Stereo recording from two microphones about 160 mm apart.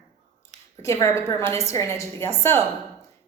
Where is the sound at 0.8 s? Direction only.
20° left (ahead or behind).